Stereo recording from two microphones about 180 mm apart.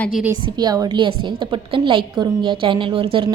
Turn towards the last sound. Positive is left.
turn(degrees=-30)  # may be behind; listen again after turning